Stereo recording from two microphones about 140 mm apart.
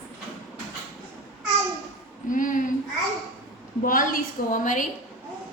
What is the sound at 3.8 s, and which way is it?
Speech, 80° left.